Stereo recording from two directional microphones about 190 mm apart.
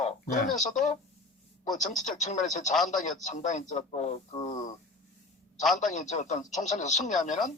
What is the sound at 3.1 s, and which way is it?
A man's voice, 40° left (ahead or behind).